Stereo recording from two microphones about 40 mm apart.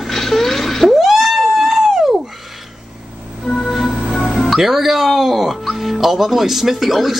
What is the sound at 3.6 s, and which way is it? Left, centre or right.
Music, centre.